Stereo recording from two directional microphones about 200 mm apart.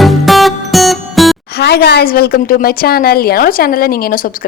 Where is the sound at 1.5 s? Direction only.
55° left (ahead or behind).